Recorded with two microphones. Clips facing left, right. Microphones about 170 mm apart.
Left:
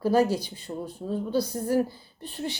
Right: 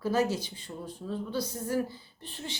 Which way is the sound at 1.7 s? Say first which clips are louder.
Left 6 dB; 35° left (ahead or behind).